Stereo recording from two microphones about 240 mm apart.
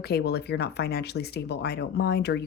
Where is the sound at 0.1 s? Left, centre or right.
Left.